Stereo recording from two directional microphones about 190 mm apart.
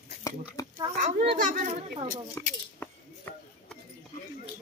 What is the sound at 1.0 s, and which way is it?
Speech, 40° right (ahead or behind).